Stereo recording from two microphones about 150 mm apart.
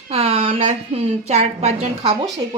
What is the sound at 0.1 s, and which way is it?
A woman's voice, 40° right (ahead or behind).